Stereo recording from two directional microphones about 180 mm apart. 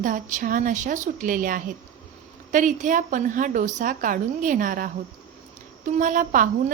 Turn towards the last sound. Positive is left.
turn(degrees=-45)  # may be behind; listen again after turning